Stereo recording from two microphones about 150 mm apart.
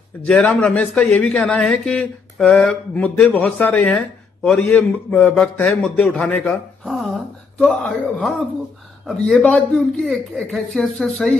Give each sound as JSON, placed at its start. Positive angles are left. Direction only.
{"t": 0.2, "sound": "a man's voice", "side_deg": 5}